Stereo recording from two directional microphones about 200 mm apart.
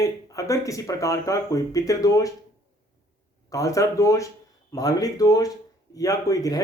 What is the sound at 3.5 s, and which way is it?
A man's voice, 15° left (ahead or behind).